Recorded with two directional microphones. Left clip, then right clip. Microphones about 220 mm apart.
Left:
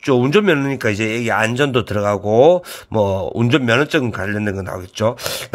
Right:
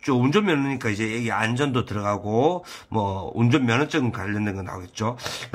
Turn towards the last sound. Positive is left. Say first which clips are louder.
# left 9 dB
turn(degrees=45)  # may be behind; listen again after turning